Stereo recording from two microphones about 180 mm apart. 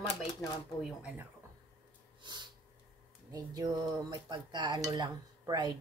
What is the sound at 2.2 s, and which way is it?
Snort, 25° right (ahead or behind).